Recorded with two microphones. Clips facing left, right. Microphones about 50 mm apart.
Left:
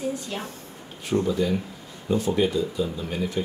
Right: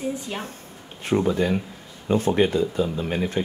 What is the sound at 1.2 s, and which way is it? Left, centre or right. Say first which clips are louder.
Speech: right 2 dB; right.